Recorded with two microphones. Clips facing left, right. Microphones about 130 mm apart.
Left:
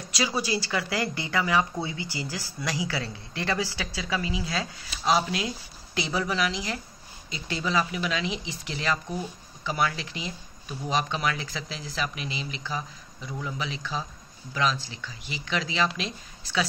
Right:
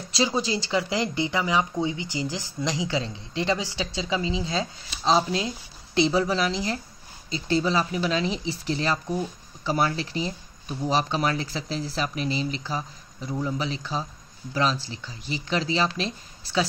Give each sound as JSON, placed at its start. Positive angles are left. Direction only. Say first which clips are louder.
{"t": 0.1, "sound": "speech", "louder": "right 3 dB", "side_deg": -25}